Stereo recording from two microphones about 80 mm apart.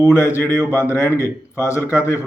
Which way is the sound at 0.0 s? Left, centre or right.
Left.